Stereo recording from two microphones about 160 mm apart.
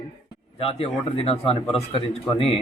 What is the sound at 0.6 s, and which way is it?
A man's voice, 35° left (ahead or behind).